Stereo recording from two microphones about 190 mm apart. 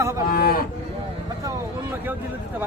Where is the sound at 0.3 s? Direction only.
50° left (ahead or behind).